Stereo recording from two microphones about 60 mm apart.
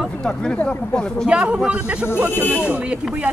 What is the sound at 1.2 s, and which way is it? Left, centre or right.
Speech, centre.